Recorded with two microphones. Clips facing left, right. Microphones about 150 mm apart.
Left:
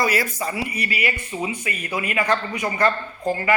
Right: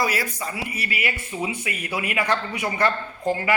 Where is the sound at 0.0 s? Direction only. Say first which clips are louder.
Left 3 dB; centre (ahead or behind).